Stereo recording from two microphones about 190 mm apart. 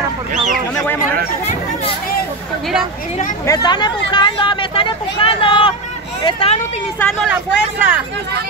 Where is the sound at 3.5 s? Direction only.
20° left (ahead or behind).